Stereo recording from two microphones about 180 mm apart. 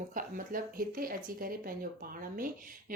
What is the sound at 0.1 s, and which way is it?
A woman's voice, 50° right (ahead or behind).